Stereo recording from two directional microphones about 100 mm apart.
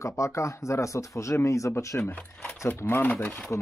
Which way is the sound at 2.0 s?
10° left (ahead or behind).